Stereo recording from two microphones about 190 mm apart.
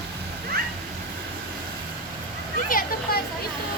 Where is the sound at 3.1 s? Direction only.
50° left (ahead or behind).